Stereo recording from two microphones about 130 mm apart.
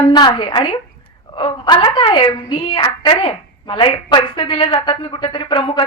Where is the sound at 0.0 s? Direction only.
35° left (ahead or behind).